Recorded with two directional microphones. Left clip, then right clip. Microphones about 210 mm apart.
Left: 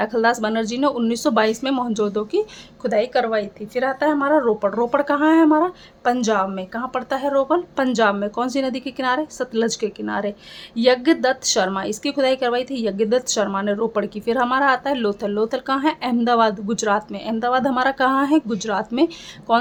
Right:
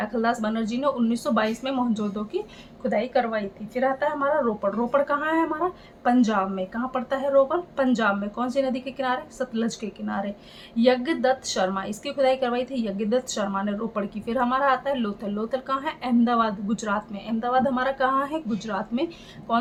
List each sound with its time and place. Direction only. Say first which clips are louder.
0.0 s a woman's voice: left 6 dB; 50° left (ahead or behind)